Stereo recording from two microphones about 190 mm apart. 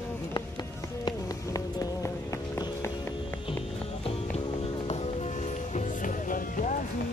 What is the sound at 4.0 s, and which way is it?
Music, 30° left (ahead or behind).